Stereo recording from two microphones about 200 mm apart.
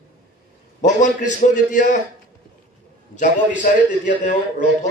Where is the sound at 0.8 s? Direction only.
40° left (ahead or behind).